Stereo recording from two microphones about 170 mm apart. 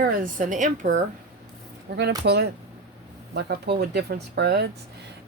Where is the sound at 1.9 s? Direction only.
80° right.